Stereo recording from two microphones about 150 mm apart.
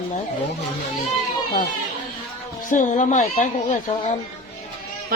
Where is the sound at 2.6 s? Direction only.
55° left (ahead or behind).